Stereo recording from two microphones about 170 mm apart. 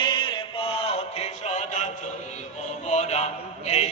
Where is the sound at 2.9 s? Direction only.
40° left (ahead or behind).